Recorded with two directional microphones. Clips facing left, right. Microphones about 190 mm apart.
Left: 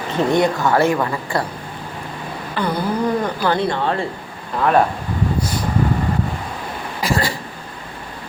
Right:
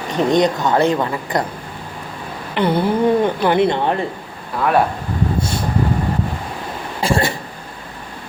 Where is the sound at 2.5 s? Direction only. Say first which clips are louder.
Right 4 dB; 25° right (ahead or behind).